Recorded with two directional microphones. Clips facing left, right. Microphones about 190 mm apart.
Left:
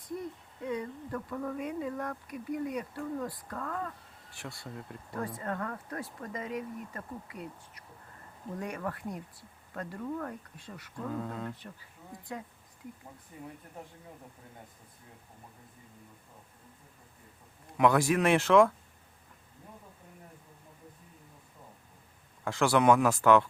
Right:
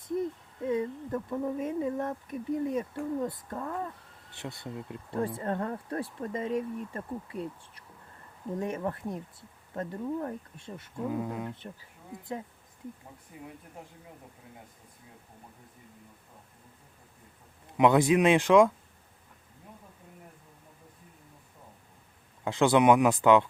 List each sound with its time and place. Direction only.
0.6 s speech: 25° right (ahead or behind)
13.3 s speech: 10° right (ahead or behind)
17.7 s speech: 20° right (ahead or behind)
22.4 s speech: 20° right (ahead or behind)